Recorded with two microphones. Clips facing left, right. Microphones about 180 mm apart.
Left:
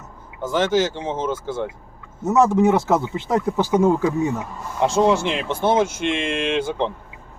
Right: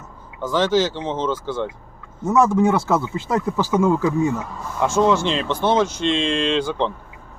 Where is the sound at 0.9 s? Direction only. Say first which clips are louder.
Right 1 dB; 10° left (ahead or behind).